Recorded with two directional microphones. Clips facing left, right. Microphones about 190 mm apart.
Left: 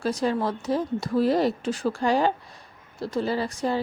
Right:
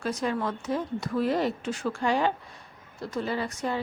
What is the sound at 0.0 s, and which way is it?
Speech, 30° left (ahead or behind).